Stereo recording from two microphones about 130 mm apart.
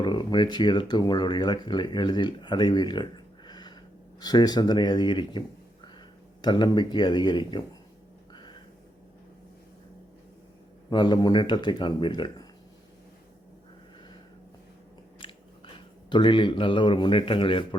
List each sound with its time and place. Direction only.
0.0 s speech: 35° left (ahead or behind)
6.4 s speech: 35° left (ahead or behind)
8.3 s a sound: 35° left (ahead or behind)
10.8 s speech: 35° left (ahead or behind)
15.2 s speech: 40° left (ahead or behind)